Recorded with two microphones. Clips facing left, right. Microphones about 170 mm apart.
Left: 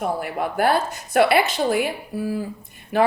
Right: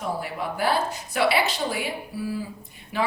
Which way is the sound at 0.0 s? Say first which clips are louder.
Left 5 dB; 55° left (ahead or behind).